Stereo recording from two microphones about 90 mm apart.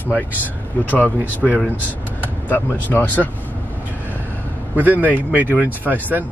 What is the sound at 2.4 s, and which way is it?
Speech, 20° left (ahead or behind).